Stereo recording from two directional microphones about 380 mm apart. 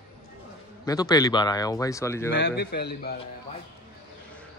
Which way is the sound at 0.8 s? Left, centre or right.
Centre.